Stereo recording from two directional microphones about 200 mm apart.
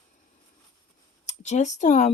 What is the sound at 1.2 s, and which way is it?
Speech, 35° left (ahead or behind).